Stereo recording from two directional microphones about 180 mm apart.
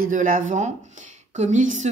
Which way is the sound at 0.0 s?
45° right (ahead or behind).